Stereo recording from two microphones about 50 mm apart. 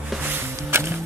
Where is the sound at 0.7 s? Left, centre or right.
Right.